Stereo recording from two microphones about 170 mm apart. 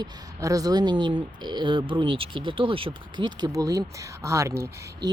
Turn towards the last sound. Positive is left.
turn(degrees=-15)  # may be behind; listen again after turning